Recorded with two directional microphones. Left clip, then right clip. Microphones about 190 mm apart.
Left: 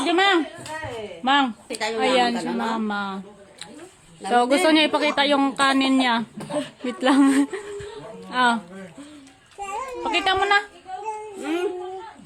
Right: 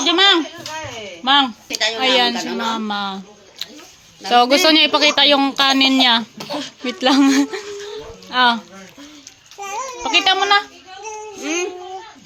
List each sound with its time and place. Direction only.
0.0 s a sound: 10° left (ahead or behind)
1.2 s speech: 5° left (ahead or behind)
1.6 s speech: 20° left (ahead or behind)
2.0 s speech: 5° right (ahead or behind)
3.6 s a sound: 15° right (ahead or behind)
4.3 s speech: 10° right (ahead or behind)
10.0 s speech: 15° right (ahead or behind)